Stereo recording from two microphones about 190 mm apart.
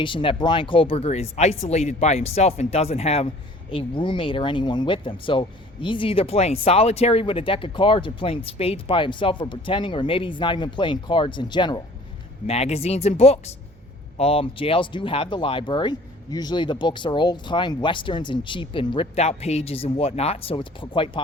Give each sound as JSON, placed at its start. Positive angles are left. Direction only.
{"t": 0.0, "sound": "speech", "side_deg": 25}
{"t": 12.5, "sound": "speech", "side_deg": 35}